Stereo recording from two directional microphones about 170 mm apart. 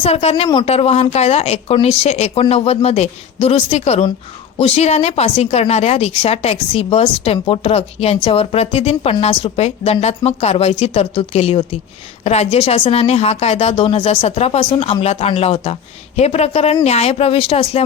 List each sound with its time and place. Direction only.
0.0 s a woman's voice: 35° left (ahead or behind)